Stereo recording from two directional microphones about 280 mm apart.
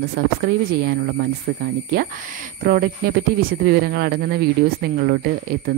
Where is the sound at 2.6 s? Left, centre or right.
Right.